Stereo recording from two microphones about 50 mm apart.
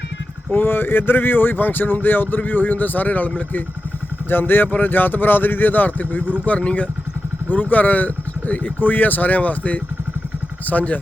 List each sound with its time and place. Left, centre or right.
0.5 s speech: left
4.3 s speech: left
6.6 s speech: left
7.4 s speech: left